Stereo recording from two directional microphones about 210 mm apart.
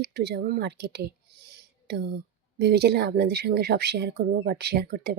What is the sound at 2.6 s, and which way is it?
Speech, 50° right (ahead or behind).